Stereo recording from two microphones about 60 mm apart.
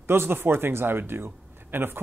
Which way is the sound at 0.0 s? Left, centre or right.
Right.